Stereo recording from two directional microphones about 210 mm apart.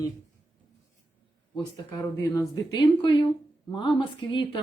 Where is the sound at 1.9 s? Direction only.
15° left (ahead or behind).